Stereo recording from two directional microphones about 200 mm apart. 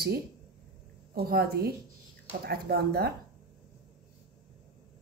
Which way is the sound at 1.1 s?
50° right (ahead or behind).